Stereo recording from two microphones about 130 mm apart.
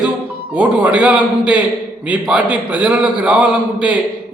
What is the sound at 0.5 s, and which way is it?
A man's voice, 10° right (ahead or behind).